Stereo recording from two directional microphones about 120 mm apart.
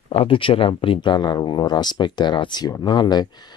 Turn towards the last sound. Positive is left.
turn(degrees=35)  # may be behind; listen again after turning